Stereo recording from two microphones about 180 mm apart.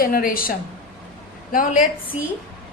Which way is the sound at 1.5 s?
45° left (ahead or behind).